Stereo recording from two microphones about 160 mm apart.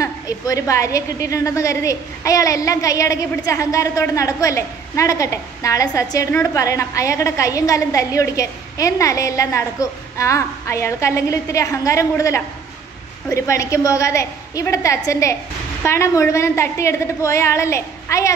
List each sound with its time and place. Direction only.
0.0 s a woman's voice: 20° left (ahead or behind)